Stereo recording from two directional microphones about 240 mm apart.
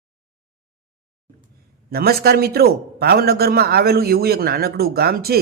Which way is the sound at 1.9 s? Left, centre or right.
Right.